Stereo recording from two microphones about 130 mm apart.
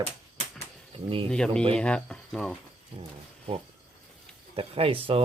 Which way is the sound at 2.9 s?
45° right (ahead or behind).